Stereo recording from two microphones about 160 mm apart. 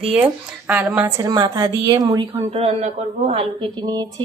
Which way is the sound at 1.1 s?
20° right (ahead or behind).